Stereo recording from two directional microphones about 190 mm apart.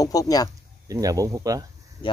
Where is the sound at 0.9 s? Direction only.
20° right (ahead or behind).